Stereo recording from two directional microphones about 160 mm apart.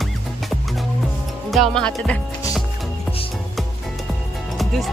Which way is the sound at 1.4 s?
Centre (ahead or behind).